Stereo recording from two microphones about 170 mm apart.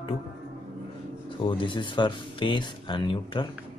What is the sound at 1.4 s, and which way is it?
Speech, 30° left (ahead or behind).